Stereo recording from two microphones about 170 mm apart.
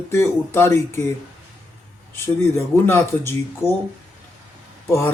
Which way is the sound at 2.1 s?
15° left (ahead or behind).